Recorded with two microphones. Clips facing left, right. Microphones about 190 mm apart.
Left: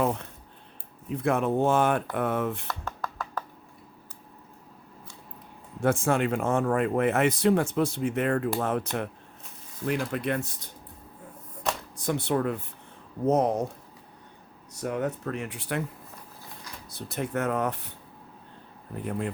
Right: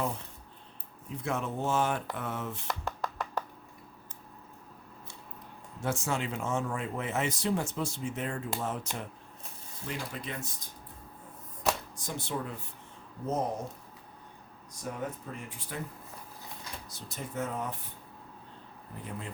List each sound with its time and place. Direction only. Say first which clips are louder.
0.0 s speech: left 7 dB; 65° left (ahead or behind)
2.6 s music: even; 15° right (ahead or behind)
5.8 s speech: left 8 dB; 55° left (ahead or behind)
11.9 s speech: left 9 dB; 60° left (ahead or behind)
14.7 s speech: left 8 dB; 70° left (ahead or behind)
16.9 s speech: left 10 dB; 65° left (ahead or behind)